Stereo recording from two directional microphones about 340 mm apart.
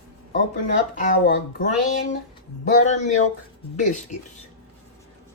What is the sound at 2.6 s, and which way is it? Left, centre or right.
Speech, left.